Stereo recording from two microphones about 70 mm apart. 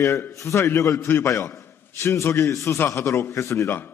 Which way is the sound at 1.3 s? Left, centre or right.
Left.